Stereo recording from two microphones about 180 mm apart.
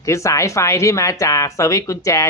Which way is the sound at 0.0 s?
15° left (ahead or behind).